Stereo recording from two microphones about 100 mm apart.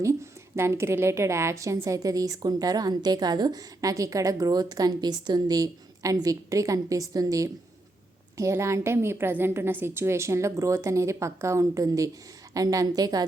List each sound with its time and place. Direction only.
0.0 s a woman's voice: 25° right (ahead or behind)